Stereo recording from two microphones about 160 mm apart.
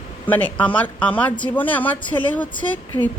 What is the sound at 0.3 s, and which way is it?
Speech, 10° left (ahead or behind).